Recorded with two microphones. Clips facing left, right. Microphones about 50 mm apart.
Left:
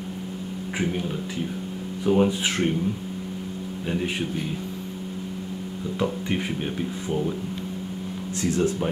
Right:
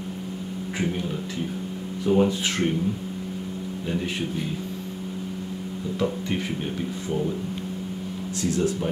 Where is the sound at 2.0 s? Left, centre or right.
Centre.